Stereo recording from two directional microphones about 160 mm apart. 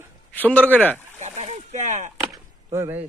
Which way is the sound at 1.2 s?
45° right (ahead or behind).